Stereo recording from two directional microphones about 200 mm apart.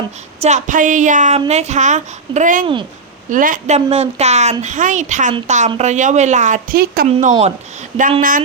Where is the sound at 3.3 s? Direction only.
40° right (ahead or behind).